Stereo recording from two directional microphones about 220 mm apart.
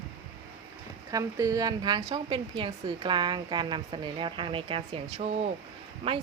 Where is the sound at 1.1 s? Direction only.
15° right (ahead or behind).